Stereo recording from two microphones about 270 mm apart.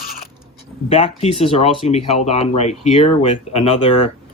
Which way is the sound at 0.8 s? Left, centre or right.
Left.